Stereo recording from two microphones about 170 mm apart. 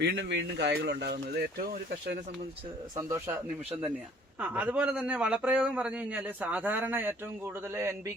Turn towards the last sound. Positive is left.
turn(degrees=-15)  # may be behind; listen again after turning